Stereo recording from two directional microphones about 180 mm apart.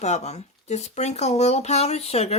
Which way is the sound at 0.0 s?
40° left (ahead or behind).